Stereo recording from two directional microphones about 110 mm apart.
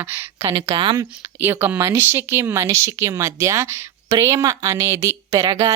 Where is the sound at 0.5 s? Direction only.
50° right (ahead or behind).